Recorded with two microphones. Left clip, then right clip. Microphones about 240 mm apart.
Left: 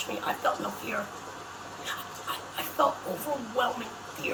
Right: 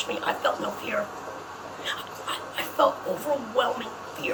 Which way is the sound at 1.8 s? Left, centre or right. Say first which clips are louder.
Right 4 dB; centre.